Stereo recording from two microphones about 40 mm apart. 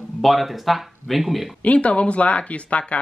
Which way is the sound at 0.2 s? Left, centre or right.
Centre.